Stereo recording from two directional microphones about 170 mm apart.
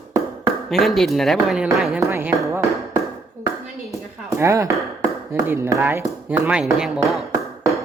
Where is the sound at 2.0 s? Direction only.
15° right (ahead or behind).